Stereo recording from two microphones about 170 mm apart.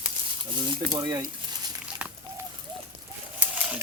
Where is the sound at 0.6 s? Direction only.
25° right (ahead or behind).